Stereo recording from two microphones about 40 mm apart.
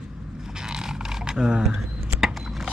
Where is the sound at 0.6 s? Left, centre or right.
Centre.